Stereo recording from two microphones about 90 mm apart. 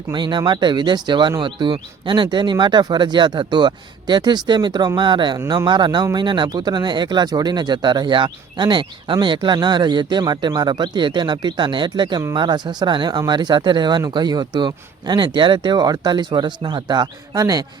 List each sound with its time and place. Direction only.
0.1 s speech: 60° right (ahead or behind)